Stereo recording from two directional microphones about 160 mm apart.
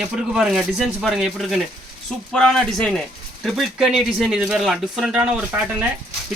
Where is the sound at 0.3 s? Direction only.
5° right (ahead or behind).